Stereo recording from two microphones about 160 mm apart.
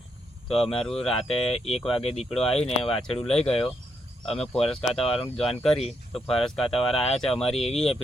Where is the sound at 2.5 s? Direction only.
40° left (ahead or behind).